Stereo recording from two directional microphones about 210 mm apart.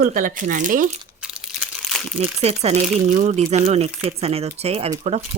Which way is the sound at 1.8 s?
Centre (ahead or behind).